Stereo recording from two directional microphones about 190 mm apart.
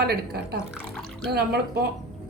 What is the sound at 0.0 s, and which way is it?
Speech, 55° right (ahead or behind).